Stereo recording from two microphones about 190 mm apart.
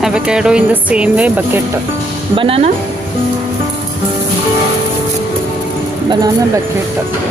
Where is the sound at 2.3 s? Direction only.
30° right (ahead or behind).